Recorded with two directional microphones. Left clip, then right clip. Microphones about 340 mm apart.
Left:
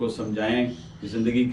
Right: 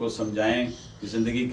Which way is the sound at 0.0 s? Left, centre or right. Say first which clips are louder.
Right 1 dB; centre.